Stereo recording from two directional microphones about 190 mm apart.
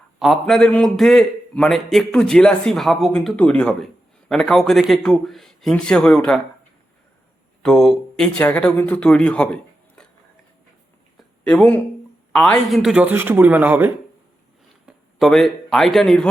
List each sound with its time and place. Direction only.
0.2 s a man's voice: centre (ahead or behind)
7.6 s speech: 5° left (ahead or behind)
11.2 s a sound: 5° left (ahead or behind)
12.3 s speech: 5° left (ahead or behind)